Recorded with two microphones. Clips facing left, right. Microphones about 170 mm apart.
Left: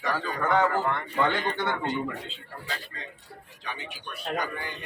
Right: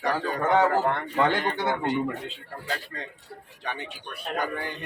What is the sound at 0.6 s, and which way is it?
A man's voice, 50° right (ahead or behind).